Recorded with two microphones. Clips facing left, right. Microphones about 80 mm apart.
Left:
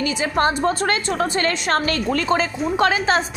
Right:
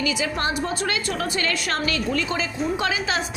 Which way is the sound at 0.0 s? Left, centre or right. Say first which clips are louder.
Left 5 dB; left.